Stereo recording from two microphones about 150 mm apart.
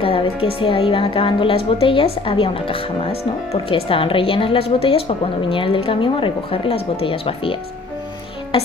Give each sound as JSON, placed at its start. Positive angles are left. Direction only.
{"t": 0.0, "sound": "a woman's voice", "side_deg": 40}